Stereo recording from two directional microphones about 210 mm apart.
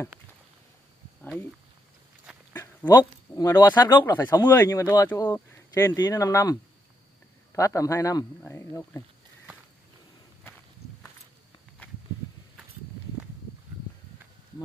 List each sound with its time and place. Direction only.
1.2 s speech: 10° left (ahead or behind)
2.5 s speech: 10° left (ahead or behind)